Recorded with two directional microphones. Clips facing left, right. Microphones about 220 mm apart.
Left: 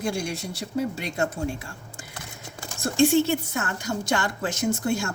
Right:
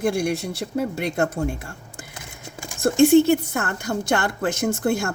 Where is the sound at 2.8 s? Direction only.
55° right (ahead or behind).